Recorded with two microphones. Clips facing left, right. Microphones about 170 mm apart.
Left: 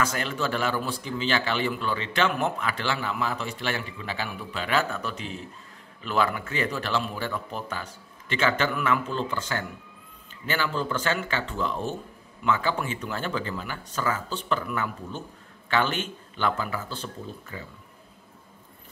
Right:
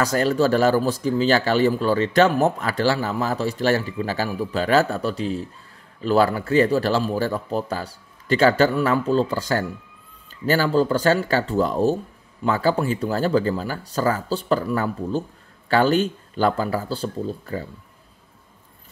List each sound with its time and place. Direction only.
0.0 s speech: 40° right (ahead or behind)